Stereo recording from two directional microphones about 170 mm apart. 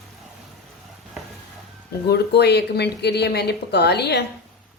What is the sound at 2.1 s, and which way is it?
Speech, 75° left (ahead or behind).